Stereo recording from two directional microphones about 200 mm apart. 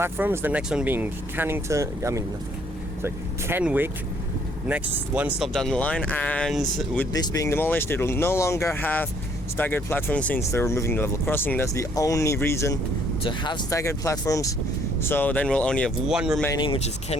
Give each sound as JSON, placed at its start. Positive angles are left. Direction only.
{"t": 0.0, "sound": "speech", "side_deg": -10}
{"t": 7.1, "sound": "speech", "side_deg": 20}
{"t": 16.6, "sound": "speech", "side_deg": 25}